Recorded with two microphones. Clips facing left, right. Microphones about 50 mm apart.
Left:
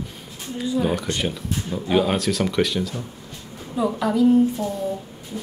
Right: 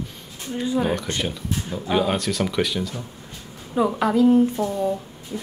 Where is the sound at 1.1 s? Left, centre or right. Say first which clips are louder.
Left 1 dB; centre.